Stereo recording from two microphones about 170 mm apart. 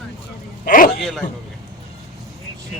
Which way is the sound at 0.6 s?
55° left (ahead or behind).